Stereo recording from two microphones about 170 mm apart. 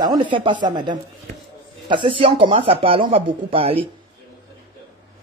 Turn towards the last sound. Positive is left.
turn(degrees=-35)  # may be behind; listen again after turning